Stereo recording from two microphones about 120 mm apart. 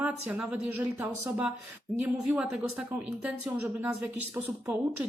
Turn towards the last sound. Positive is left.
turn(degrees=-15)  # may be behind; listen again after turning